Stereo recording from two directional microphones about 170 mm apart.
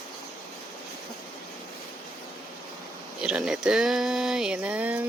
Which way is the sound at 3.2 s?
5° right (ahead or behind).